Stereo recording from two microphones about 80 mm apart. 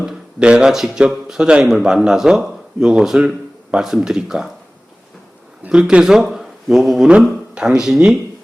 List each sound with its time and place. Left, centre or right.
0.0 s speech: centre
5.6 s speech: centre